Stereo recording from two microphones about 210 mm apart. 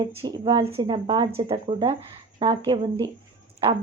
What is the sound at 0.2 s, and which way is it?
Speech, 20° right (ahead or behind).